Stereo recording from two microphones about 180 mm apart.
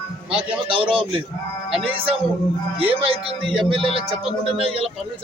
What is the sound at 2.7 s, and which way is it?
Speech, 30° right (ahead or behind).